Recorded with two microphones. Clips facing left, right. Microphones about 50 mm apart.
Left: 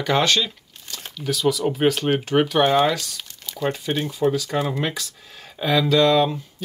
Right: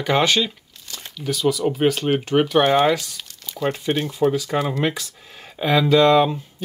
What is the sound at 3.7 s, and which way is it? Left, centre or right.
Speech, centre.